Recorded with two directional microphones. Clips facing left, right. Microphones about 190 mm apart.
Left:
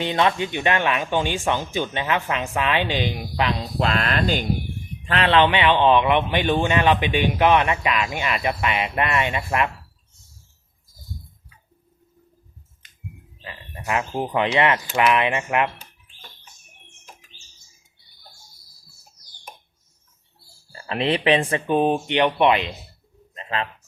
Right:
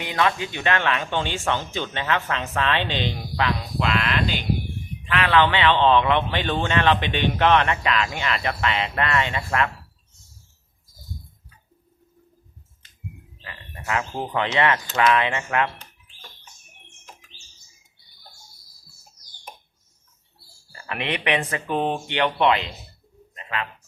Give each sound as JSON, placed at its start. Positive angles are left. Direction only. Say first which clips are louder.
{"t": 0.0, "sound": "speech", "louder": "left 3 dB", "side_deg": 25}
{"t": 3.8, "sound": "speech", "louder": "left 2 dB", "side_deg": 40}
{"t": 5.3, "sound": "speech", "louder": "left 1 dB", "side_deg": 20}
{"t": 13.4, "sound": "speech", "louder": "left 3 dB", "side_deg": 20}
{"t": 20.7, "sound": "speech", "louder": "left 6 dB", "side_deg": 30}
{"t": 23.3, "sound": "bird", "louder": "left 3 dB", "side_deg": 30}